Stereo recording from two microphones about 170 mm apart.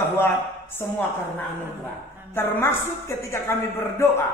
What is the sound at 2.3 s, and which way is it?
A man's voice, 15° left (ahead or behind).